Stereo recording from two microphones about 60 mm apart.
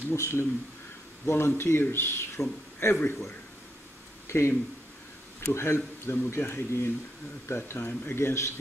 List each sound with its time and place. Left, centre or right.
0.1 s speech: left
4.3 s speech: left